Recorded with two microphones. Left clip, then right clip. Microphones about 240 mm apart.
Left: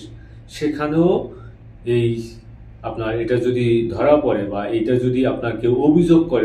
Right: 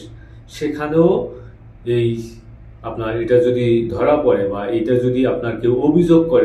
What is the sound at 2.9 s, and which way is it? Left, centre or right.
A man's voice, centre.